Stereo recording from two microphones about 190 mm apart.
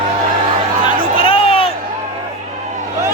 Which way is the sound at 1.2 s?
30° left (ahead or behind).